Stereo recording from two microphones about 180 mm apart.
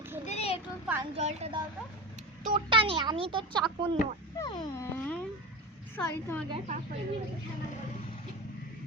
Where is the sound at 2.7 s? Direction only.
30° right (ahead or behind).